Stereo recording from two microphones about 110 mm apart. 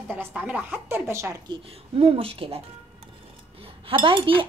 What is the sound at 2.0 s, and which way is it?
Speech, 60° right (ahead or behind).